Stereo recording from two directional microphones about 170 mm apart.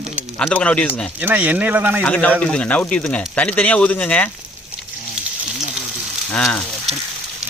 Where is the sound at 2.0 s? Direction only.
10° left (ahead or behind).